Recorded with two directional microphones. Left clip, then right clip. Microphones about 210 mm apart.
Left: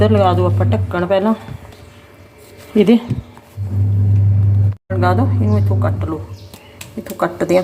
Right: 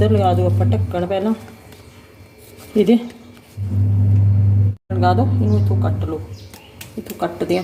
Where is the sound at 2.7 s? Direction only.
15° left (ahead or behind).